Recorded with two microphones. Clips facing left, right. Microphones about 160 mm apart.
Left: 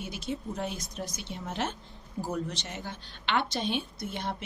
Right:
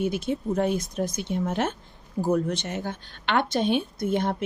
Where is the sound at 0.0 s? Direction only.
55° right (ahead or behind).